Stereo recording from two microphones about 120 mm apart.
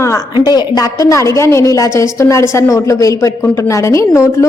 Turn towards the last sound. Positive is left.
turn(degrees=25)  # may be behind; listen again after turning